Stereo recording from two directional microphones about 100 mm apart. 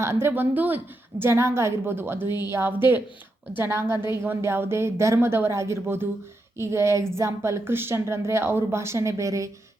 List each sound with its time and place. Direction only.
0.0 s a woman's voice: 25° right (ahead or behind)